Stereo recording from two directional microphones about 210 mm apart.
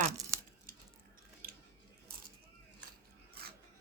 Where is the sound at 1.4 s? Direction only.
45° right (ahead or behind).